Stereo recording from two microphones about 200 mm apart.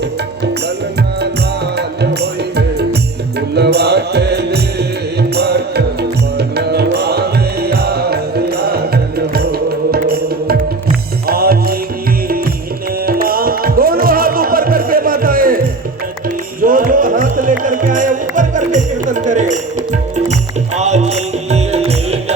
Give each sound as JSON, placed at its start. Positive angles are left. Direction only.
{"t": 2.0, "sound": "music", "side_deg": -55}
{"t": 11.3, "sound": "music", "side_deg": -50}
{"t": 13.1, "sound": "music", "side_deg": -50}
{"t": 20.7, "sound": "music", "side_deg": -35}